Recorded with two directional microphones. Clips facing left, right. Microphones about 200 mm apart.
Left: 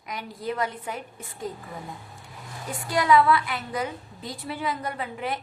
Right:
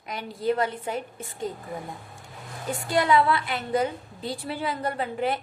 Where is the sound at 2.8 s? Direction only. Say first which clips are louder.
Left 1 dB; 25° right (ahead or behind).